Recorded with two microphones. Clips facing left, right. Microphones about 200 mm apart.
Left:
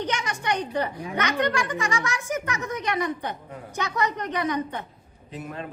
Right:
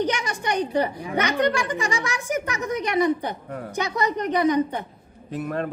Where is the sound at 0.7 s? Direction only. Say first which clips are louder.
Right 4 dB; 30° right (ahead or behind).